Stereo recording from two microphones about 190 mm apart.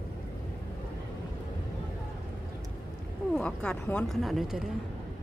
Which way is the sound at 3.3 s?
5° left (ahead or behind).